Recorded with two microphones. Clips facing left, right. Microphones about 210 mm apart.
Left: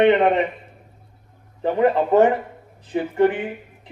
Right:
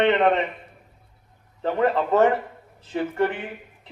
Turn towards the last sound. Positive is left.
turn(degrees=15)  # may be behind; listen again after turning